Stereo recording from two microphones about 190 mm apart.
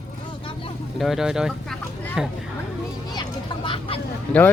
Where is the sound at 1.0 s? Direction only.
Centre (ahead or behind).